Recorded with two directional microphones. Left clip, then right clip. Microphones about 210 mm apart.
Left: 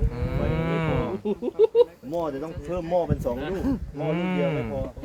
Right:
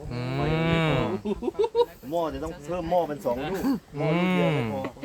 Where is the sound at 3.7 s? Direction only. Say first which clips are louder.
Right 1 dB; 55° right (ahead or behind).